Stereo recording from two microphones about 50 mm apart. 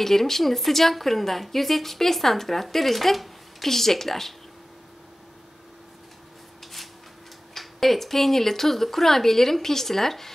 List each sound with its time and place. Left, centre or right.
0.0 s a woman's voice: centre
6.6 s a sound: centre
7.5 s a woman's voice: centre